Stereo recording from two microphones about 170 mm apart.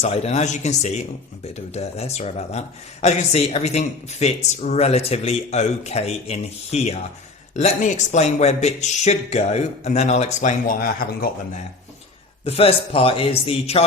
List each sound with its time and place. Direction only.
0.0 s speech: 40° left (ahead or behind); by 11.3 s 60° left (ahead or behind)
12.5 s speech: 35° left (ahead or behind)